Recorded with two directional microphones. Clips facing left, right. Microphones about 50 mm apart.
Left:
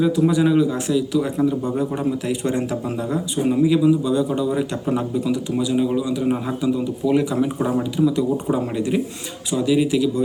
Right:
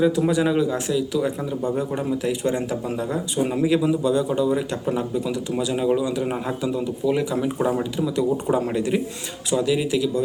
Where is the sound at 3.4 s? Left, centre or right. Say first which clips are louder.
Left 4 dB; centre.